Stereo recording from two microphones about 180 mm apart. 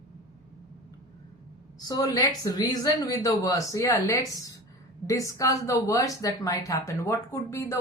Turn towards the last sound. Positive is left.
turn(degrees=15)  # may be behind; listen again after turning